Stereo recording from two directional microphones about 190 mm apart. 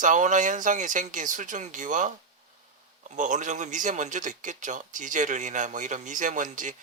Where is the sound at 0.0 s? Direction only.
40° right (ahead or behind).